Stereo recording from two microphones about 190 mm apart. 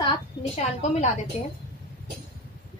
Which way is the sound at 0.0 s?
30° left (ahead or behind).